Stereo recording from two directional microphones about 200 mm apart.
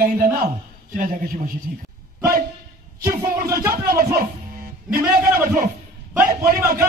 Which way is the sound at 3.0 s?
45° right (ahead or behind).